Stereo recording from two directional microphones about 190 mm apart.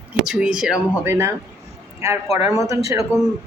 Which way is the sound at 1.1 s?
15° right (ahead or behind).